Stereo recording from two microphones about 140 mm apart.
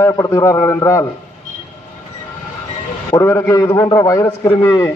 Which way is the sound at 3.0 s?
20° left (ahead or behind).